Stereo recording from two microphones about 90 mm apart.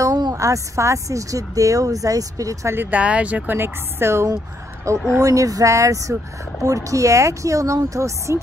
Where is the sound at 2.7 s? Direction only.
20° right (ahead or behind).